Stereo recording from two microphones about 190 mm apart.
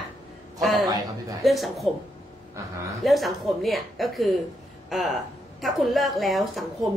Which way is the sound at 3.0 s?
Centre (ahead or behind).